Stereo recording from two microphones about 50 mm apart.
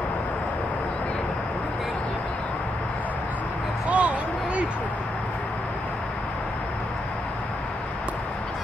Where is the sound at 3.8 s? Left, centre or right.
Right.